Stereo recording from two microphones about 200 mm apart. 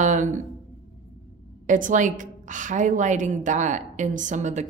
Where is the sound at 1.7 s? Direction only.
40° right (ahead or behind).